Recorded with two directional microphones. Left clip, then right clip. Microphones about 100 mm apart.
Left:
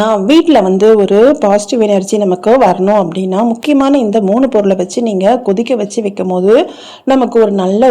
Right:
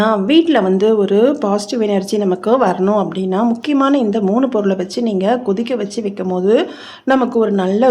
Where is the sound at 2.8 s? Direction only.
35° left (ahead or behind).